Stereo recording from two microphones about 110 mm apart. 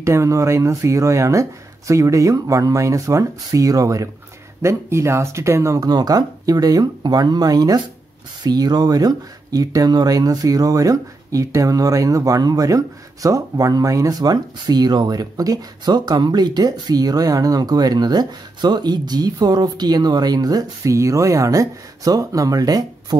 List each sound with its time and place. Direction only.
0.0 s speech: 25° right (ahead or behind)